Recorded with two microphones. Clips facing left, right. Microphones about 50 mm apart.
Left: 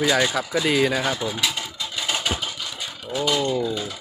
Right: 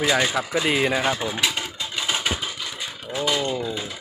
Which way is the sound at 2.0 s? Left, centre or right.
Centre.